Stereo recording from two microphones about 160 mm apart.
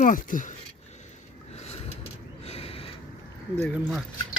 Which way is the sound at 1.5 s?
40° left (ahead or behind).